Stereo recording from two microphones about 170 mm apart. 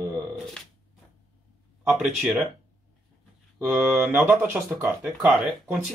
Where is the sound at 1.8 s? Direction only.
5° right (ahead or behind).